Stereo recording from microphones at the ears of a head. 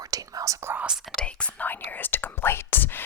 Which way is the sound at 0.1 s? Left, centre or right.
Right.